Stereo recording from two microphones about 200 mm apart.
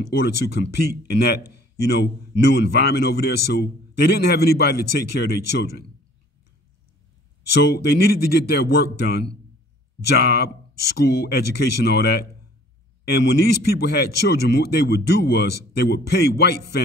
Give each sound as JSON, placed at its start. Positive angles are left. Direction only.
{"t": 0.2, "sound": "speech", "side_deg": 55}
{"t": 7.5, "sound": "speech", "side_deg": 55}